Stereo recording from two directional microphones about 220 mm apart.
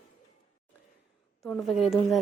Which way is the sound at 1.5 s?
Centre (ahead or behind).